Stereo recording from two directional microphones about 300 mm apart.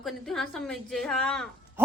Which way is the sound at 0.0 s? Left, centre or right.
Centre.